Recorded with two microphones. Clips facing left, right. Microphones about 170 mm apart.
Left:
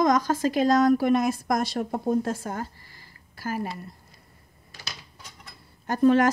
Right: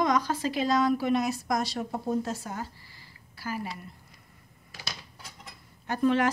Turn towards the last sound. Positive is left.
turn(degrees=45)  # may be behind; listen again after turning